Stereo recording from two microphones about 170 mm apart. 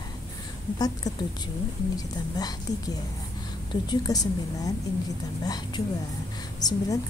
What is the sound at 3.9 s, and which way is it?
Speech, 20° left (ahead or behind).